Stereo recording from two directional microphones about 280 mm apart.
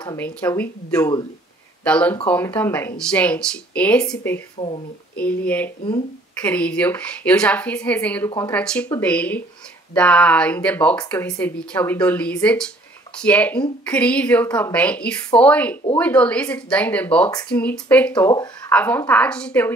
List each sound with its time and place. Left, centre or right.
0.0 s a woman's voice: centre
4.6 s speech: left
5.1 s a woman's voice: centre